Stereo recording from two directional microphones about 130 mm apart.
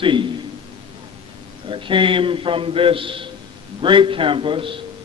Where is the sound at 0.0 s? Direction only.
40° right (ahead or behind).